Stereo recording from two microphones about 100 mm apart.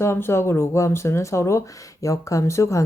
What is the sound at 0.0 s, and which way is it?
A woman's voice, 25° left (ahead or behind).